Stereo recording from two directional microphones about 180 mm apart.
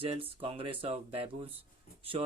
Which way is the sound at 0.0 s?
30° right (ahead or behind).